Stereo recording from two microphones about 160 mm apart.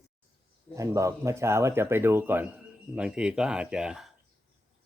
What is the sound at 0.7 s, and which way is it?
Speech, 20° right (ahead or behind).